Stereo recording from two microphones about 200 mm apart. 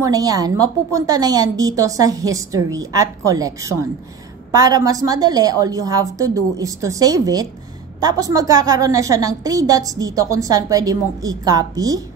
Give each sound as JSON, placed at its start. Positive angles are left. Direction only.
{"t": 0.0, "sound": "a woman's voice", "side_deg": -15}